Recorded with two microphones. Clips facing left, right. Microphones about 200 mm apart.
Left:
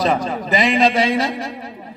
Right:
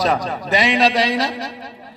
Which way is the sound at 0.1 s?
Centre (ahead or behind).